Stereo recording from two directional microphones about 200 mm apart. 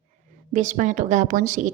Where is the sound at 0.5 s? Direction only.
40° right (ahead or behind).